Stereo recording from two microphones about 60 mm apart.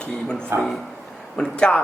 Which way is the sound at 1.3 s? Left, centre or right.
Centre.